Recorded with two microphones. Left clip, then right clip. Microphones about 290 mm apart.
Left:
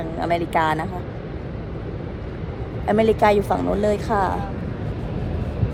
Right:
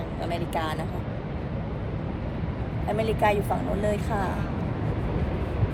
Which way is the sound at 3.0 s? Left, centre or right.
Left.